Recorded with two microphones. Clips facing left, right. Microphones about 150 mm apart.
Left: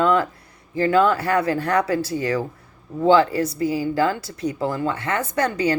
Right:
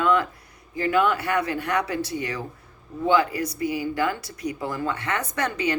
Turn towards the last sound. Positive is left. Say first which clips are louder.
# left 5 dB
turn(degrees=35)  # may be behind; listen again after turning